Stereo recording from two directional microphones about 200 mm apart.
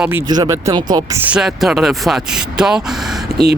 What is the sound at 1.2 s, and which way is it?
Speech, 5° right (ahead or behind).